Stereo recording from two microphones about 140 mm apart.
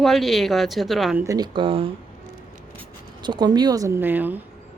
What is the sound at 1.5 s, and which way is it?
Speech, 40° right (ahead or behind).